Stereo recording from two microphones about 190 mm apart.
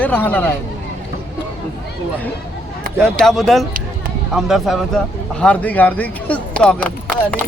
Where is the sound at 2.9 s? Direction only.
45° right (ahead or behind).